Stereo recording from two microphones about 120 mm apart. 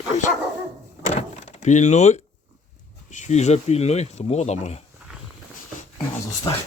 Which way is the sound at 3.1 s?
80° left.